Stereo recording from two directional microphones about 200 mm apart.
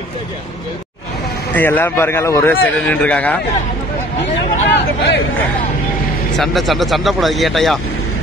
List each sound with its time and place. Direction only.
1.5 s speech: 10° left (ahead or behind)
4.6 s speech: 55° left (ahead or behind)
6.3 s speech: centre (ahead or behind)